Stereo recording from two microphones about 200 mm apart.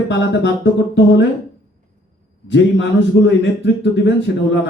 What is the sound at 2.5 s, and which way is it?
A man's voice, 65° left (ahead or behind).